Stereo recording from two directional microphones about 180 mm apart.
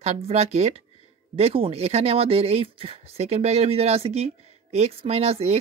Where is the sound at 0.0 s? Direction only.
35° right (ahead or behind).